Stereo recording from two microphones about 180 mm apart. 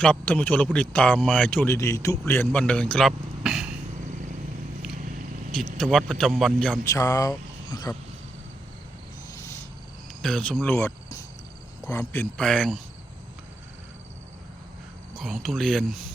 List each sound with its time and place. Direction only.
0.0 s speech: 5° left (ahead or behind)
5.5 s a man's voice: centre (ahead or behind)
6.8 s speech: 15° left (ahead or behind)
10.2 s speech: 5° left (ahead or behind)
15.1 s a man's voice: centre (ahead or behind)